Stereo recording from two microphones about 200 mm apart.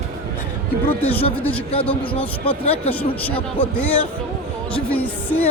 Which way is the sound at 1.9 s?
25° left (ahead or behind).